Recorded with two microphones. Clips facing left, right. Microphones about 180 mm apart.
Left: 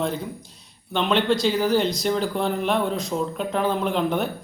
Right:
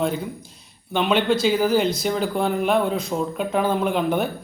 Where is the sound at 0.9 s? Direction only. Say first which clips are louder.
Right 1 dB; 5° right (ahead or behind).